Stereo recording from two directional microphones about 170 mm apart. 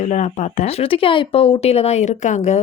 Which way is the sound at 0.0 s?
45° left (ahead or behind).